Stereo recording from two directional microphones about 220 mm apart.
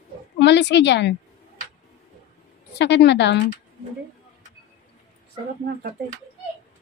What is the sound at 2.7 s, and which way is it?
Speech, 50° left (ahead or behind).